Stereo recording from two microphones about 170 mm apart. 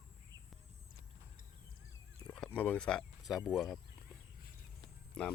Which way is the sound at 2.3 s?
5° left (ahead or behind).